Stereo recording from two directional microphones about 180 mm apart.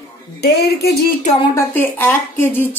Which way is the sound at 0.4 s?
65° left (ahead or behind).